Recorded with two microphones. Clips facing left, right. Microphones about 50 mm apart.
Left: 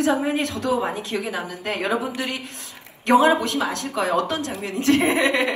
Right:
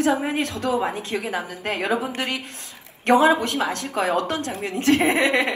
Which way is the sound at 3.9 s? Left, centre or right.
Right.